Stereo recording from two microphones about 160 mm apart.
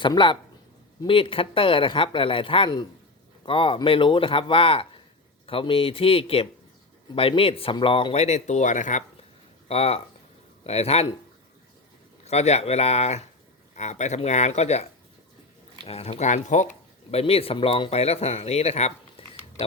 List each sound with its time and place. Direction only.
0.0 s speech: 30° left (ahead or behind); by 9.0 s 50° left (ahead or behind)
9.6 s speech: 40° left (ahead or behind)
12.2 s speech: 40° left (ahead or behind)
15.9 s speech: 40° left (ahead or behind)